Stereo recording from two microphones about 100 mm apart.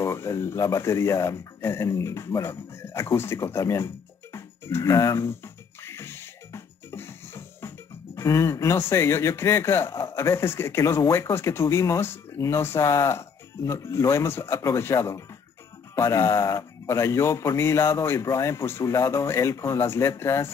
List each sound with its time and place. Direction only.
0.0 s speech: 25° left (ahead or behind)